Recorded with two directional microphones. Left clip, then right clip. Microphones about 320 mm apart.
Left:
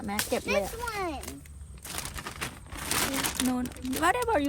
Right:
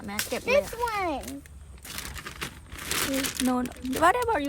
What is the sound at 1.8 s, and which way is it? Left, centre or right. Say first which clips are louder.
Crumpling: even; centre.